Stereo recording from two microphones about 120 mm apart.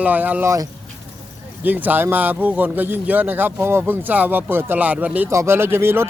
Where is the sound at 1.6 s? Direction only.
15° right (ahead or behind).